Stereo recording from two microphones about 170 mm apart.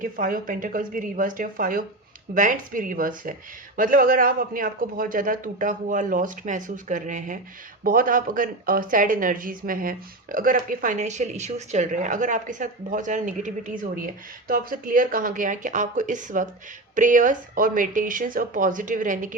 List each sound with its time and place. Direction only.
0.0 s speech: 55° right (ahead or behind)